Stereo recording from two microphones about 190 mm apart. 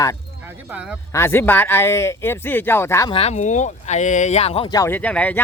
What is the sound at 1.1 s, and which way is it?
Speech, 10° left (ahead or behind).